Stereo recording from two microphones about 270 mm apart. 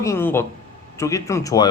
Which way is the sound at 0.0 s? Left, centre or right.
Centre.